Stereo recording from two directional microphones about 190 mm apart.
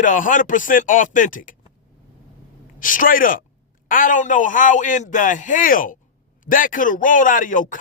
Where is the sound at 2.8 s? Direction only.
45° left (ahead or behind).